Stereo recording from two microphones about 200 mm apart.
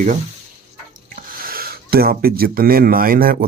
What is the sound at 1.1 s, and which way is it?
Speech, 45° right (ahead or behind).